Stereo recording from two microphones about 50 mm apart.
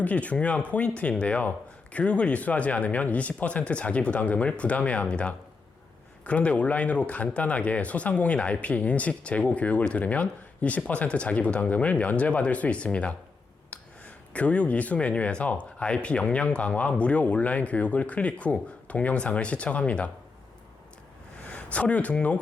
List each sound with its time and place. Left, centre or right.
0.0 s speech: left
21.4 s speech: left